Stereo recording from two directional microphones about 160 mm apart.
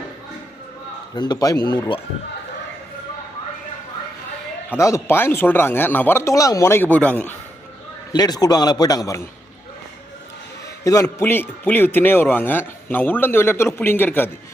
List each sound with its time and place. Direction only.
1.1 s a man's voice: 25° left (ahead or behind)
4.7 s a man's voice: 20° left (ahead or behind)
8.1 s a man's voice: 25° left (ahead or behind)
10.8 s a man's voice: 20° left (ahead or behind)